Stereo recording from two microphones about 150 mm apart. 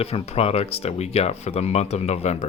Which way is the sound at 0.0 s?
40° left (ahead or behind).